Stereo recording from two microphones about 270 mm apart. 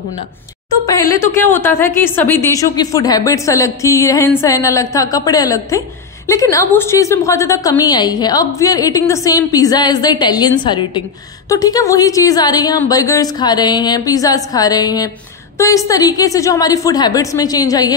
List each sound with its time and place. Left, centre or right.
1.2 s a woman's voice: centre